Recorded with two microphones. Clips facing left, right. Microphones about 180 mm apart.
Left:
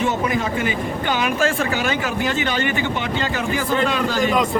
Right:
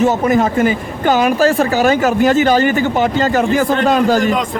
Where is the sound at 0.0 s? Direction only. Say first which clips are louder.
Right 8 dB; 45° right (ahead or behind).